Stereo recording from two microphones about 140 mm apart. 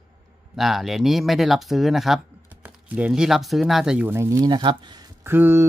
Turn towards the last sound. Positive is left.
turn(degrees=-15)  # may be behind; listen again after turning